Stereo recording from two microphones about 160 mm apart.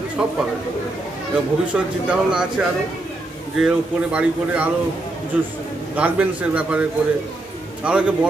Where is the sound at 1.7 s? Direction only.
5° right (ahead or behind).